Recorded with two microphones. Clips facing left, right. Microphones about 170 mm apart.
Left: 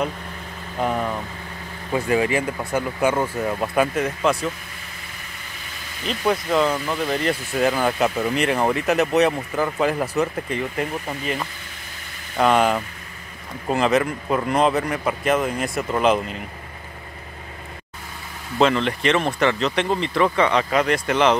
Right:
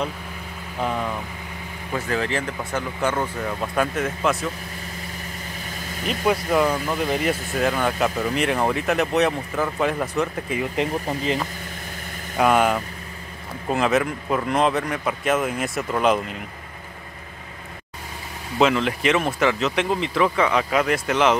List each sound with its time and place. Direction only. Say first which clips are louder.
0.7 s speech: left 2 dB; 10° left (ahead or behind)
6.0 s speech: even; 10° right (ahead or behind)
7.5 s speech: left 4 dB; centre (ahead or behind)
10.8 s speech: right 3 dB; 20° right (ahead or behind)
12.4 s speech: left 1 dB; 5° right (ahead or behind)
18.6 s speech: left 1 dB; 5° right (ahead or behind)